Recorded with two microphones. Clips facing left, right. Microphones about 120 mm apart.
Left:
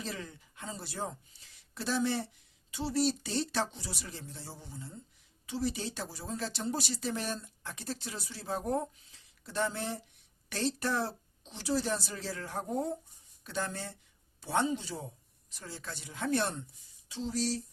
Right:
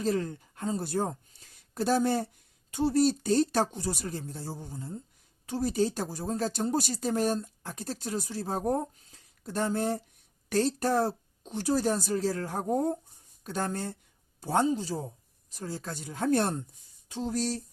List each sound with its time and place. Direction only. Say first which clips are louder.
0.0 s speech: right 12 dB; 45° right (ahead or behind)